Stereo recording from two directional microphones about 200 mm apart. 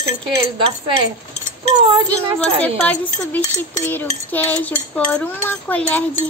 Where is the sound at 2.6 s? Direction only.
10° left (ahead or behind).